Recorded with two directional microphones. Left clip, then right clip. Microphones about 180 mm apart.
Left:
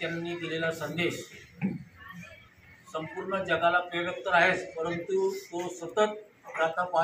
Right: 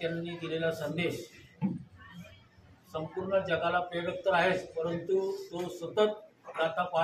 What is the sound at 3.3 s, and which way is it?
A man's voice, 15° right (ahead or behind).